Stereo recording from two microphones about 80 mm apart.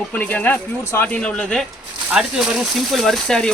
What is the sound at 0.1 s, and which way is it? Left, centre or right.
Speech, left.